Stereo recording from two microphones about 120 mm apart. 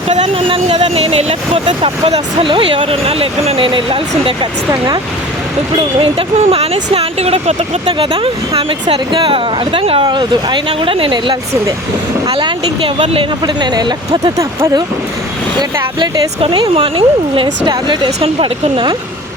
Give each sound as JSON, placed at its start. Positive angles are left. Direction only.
{"t": 0.3, "sound": "speech", "side_deg": -50}
{"t": 5.7, "sound": "speech", "side_deg": -50}
{"t": 7.9, "sound": "speech", "side_deg": -45}
{"t": 16.4, "sound": "speech", "side_deg": -45}